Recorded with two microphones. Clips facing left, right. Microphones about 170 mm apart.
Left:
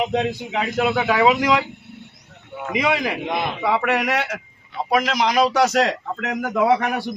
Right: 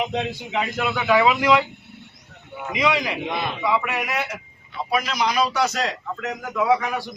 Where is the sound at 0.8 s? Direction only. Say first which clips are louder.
Left 2 dB; 30° left (ahead or behind).